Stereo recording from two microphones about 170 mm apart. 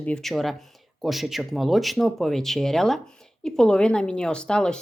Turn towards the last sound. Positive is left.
turn(degrees=5)  # may be behind; listen again after turning